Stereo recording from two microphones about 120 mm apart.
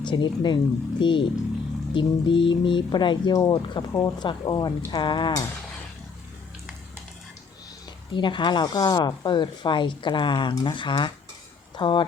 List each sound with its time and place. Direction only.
0.0 s speech: 40° left (ahead or behind)
8.1 s speech: 40° left (ahead or behind)